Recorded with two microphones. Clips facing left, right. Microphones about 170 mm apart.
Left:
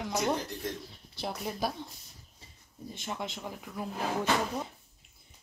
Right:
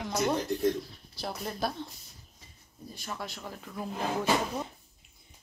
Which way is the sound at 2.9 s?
20° left (ahead or behind).